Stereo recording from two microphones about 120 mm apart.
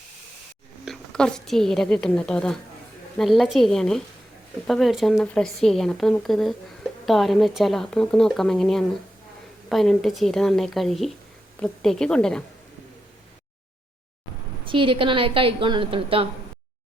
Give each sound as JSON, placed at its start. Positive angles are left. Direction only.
{"t": 0.9, "sound": "a woman's voice", "side_deg": 5}
{"t": 14.6, "sound": "a woman's voice", "side_deg": -45}